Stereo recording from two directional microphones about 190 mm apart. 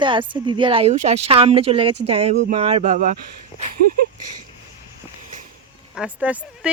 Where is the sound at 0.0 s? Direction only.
25° right (ahead or behind).